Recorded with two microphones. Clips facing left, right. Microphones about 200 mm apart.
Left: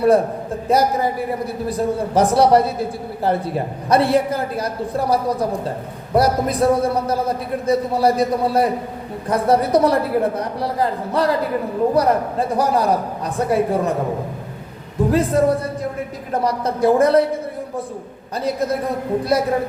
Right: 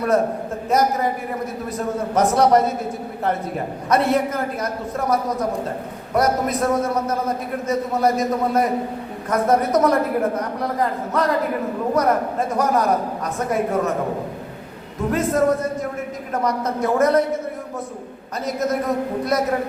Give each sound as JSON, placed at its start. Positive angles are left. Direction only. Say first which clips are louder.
{"t": 0.7, "sound": "a man's voice", "louder": "left 2 dB", "side_deg": 30}
{"t": 3.8, "sound": "a man's voice", "louder": "left 3 dB", "side_deg": 30}
{"t": 14.9, "sound": "a man's voice", "louder": "left 3 dB", "side_deg": 30}
{"t": 18.4, "sound": "a man's voice", "louder": "left 1 dB", "side_deg": 30}